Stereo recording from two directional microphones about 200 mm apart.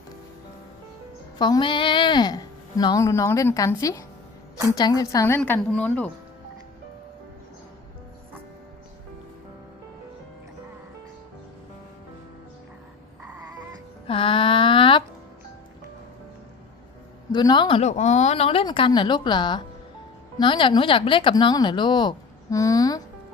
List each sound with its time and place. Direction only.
1.4 s a woman's voice: 20° left (ahead or behind)
13.2 s baby cry: 5° right (ahead or behind)
14.1 s a sound: 25° left (ahead or behind)
17.3 s a woman's voice: 20° left (ahead or behind)